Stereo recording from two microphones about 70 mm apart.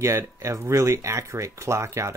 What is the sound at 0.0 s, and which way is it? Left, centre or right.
Speech, right.